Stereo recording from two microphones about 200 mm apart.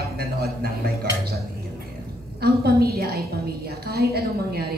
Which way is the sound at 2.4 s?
50° right (ahead or behind).